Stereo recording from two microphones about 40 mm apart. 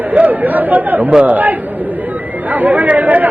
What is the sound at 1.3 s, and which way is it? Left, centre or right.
Speech, right.